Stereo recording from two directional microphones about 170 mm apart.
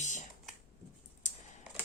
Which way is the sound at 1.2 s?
45° left (ahead or behind).